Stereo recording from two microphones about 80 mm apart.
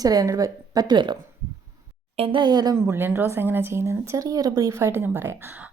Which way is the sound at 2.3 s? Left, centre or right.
Right.